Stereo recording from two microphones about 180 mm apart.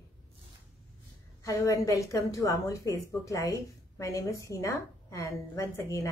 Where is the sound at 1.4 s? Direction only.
15° left (ahead or behind).